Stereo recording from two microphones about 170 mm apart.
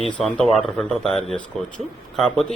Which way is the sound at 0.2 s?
Centre (ahead or behind).